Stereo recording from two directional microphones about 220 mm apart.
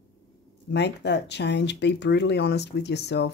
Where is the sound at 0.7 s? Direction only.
50° left (ahead or behind).